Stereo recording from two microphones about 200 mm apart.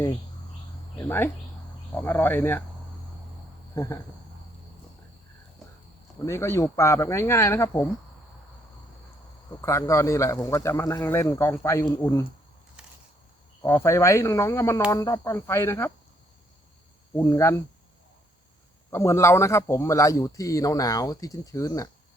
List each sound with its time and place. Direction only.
0.9 s a man's voice: 10° left (ahead or behind)
3.8 s a man's voice: 15° left (ahead or behind)
6.2 s a man's voice: 15° left (ahead or behind)
9.5 s a man's voice: 15° left (ahead or behind)
13.6 s a man's voice: 10° left (ahead or behind)
17.2 s a man's voice: 15° left (ahead or behind)
18.9 s a man's voice: 15° left (ahead or behind)